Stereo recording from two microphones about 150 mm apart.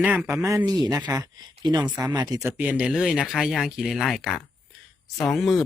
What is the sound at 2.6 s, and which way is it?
Speech, 10° right (ahead or behind).